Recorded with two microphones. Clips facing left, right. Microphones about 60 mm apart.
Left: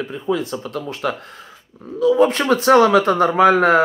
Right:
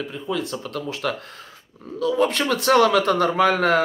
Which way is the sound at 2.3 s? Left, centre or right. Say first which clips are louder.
Left 5 dB; left.